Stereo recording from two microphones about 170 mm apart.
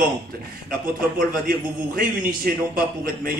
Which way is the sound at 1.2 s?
60° right (ahead or behind).